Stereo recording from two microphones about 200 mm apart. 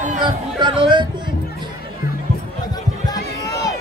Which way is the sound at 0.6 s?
25° right (ahead or behind).